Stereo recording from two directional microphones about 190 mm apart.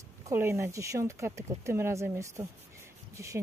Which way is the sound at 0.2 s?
15° right (ahead or behind).